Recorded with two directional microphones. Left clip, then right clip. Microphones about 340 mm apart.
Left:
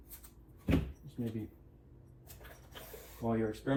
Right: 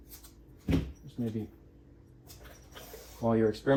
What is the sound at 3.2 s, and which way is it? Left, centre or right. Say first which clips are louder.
Speech: right 8 dB; right.